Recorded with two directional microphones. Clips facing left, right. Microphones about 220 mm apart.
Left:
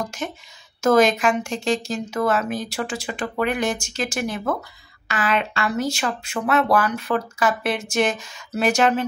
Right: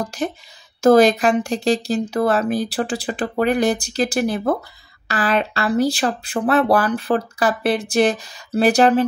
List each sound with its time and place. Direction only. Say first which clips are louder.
0.0 s speech: right 5 dB; 35° right (ahead or behind)